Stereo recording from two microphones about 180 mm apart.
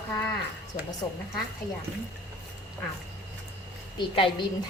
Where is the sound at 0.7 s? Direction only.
20° left (ahead or behind).